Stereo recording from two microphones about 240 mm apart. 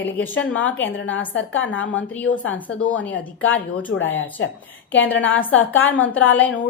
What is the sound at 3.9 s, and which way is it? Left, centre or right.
Speech, left.